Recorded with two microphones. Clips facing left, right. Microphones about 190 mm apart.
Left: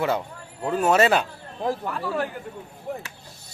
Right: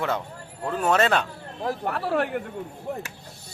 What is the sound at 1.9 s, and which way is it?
Speech, 65° right (ahead or behind).